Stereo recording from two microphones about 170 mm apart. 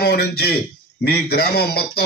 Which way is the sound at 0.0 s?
65° left (ahead or behind).